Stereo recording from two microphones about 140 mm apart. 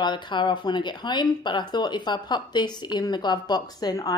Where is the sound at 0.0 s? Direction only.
35° left (ahead or behind).